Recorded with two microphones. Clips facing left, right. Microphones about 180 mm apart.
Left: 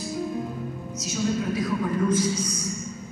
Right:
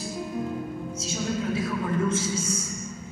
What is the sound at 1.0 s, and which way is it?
Speech, 25° right (ahead or behind).